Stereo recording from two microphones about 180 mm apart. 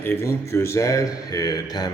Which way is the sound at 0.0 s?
10° left (ahead or behind).